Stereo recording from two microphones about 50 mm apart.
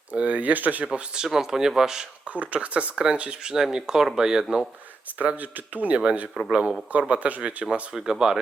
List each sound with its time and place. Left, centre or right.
0.1 s speech: right
0.9 s speech: centre
2.3 s speech: right; by 4.6 s centre
5.2 s speech: right
6.5 s speech: centre
7.6 s speech: centre